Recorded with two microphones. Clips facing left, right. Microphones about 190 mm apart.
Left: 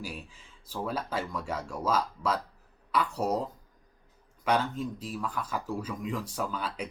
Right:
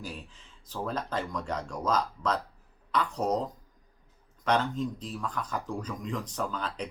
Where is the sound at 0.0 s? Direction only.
10° left (ahead or behind).